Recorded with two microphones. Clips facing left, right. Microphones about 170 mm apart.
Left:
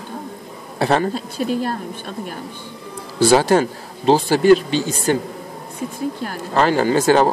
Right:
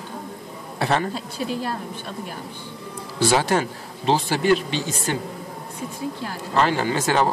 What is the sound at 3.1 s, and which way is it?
A man's voice, 35° left (ahead or behind).